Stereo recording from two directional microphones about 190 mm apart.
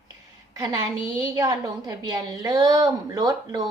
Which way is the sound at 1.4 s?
20° right (ahead or behind).